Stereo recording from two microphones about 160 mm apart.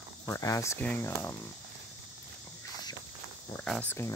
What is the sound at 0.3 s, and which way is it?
Speech, 20° left (ahead or behind).